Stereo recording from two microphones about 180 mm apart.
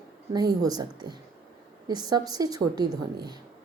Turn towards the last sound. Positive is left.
turn(degrees=-20)  # may be behind; listen again after turning